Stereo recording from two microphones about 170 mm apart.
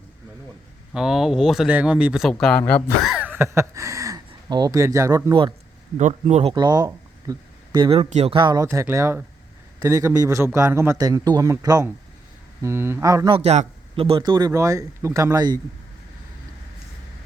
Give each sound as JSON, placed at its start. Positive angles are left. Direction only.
{"t": 0.9, "sound": "speech", "side_deg": -5}
{"t": 3.1, "sound": "a sound", "side_deg": -10}
{"t": 4.3, "sound": "speech", "side_deg": -25}
{"t": 6.0, "sound": "speech", "side_deg": -45}
{"t": 6.5, "sound": "speech", "side_deg": -25}
{"t": 8.6, "sound": "speech", "side_deg": -15}
{"t": 13.3, "sound": "speech", "side_deg": -40}